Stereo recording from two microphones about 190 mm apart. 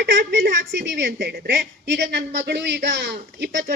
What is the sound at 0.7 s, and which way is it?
A woman's voice, 70° right (ahead or behind).